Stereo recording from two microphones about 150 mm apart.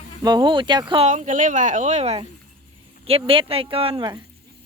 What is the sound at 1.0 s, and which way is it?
A woman's voice, 50° right (ahead or behind).